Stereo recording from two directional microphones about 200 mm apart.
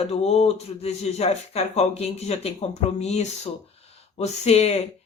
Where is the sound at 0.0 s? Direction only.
30° left (ahead or behind).